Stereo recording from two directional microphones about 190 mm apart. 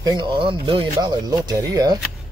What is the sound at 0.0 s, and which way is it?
Speech, 20° right (ahead or behind).